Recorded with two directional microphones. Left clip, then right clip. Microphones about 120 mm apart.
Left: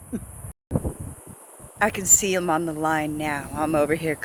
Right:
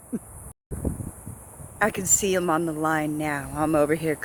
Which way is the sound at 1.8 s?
40° right (ahead or behind).